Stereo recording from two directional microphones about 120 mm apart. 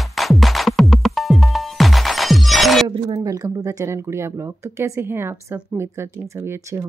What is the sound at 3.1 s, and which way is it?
Speech, 30° right (ahead or behind).